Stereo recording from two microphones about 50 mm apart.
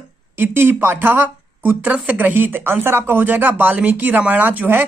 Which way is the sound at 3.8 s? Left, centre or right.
Right.